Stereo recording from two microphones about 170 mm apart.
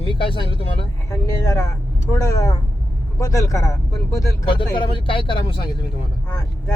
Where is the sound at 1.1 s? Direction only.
20° left (ahead or behind).